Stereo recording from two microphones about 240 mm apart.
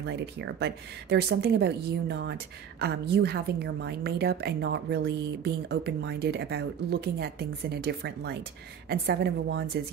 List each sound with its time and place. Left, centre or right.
0.0 s a woman's voice: right